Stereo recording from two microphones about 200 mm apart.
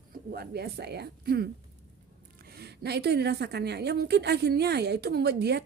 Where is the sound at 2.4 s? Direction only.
55° right (ahead or behind).